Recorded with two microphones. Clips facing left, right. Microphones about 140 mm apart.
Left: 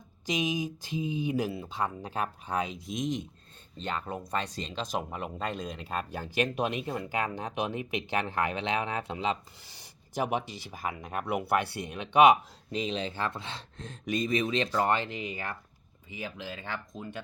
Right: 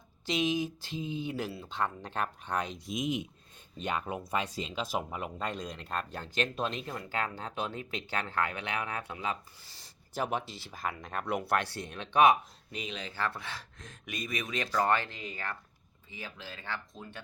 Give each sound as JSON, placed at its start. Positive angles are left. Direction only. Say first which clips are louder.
{"t": 0.3, "sound": "speech", "louder": "even", "side_deg": 15}
{"t": 9.8, "sound": "speech", "louder": "left 3 dB", "side_deg": 15}
{"t": 12.7, "sound": "speech", "louder": "left 7 dB", "side_deg": 30}